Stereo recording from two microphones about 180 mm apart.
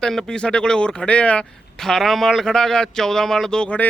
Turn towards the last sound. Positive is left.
turn(degrees=5)  # may be behind; listen again after turning